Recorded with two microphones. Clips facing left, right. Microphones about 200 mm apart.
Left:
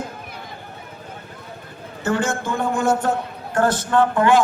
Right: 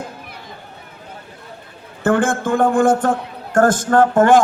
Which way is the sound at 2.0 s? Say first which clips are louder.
Right 6 dB; 55° right (ahead or behind).